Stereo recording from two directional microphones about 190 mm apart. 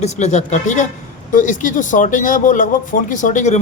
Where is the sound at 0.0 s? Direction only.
35° left (ahead or behind).